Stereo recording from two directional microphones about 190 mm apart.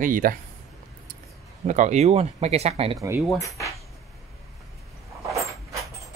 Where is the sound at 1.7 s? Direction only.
40° right (ahead or behind).